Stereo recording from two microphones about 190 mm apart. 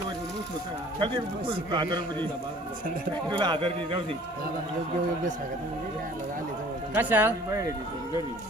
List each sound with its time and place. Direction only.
1.0 s a man's voice: 25° right (ahead or behind)
3.2 s a man's voice: 25° right (ahead or behind)
6.9 s speech: 10° right (ahead or behind)